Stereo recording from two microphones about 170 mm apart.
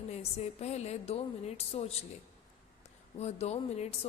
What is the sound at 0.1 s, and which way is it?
A woman's voice, 40° left (ahead or behind).